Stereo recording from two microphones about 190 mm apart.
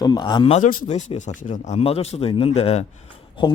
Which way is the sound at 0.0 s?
20° left (ahead or behind).